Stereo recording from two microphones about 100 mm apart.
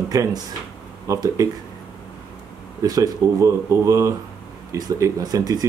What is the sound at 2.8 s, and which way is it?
Speech, 35° right (ahead or behind).